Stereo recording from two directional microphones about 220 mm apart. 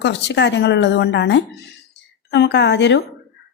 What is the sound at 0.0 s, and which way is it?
A woman's voice, 50° left (ahead or behind).